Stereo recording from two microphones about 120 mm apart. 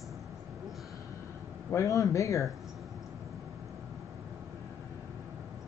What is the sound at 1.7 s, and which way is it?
Speech, 25° left (ahead or behind).